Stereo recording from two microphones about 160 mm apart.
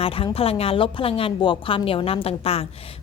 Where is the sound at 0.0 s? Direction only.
35° left (ahead or behind).